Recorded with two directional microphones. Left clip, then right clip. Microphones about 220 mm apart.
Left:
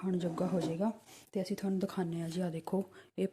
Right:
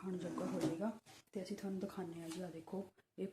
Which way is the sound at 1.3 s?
45° left (ahead or behind).